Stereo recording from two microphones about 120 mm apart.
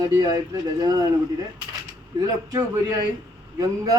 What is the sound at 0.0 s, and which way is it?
Speech, 35° right (ahead or behind).